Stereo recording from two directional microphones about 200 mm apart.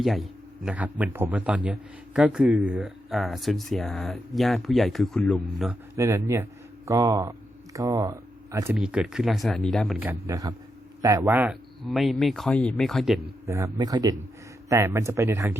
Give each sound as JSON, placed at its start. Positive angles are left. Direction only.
{"t": 0.0, "sound": "speech", "side_deg": 0}
{"t": 6.0, "sound": "speech", "side_deg": -15}
{"t": 8.7, "sound": "speech", "side_deg": -5}
{"t": 13.5, "sound": "speech", "side_deg": -15}